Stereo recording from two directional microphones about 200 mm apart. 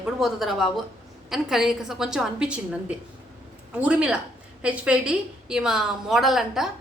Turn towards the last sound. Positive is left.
turn(degrees=0)  # may be behind; listen again after turning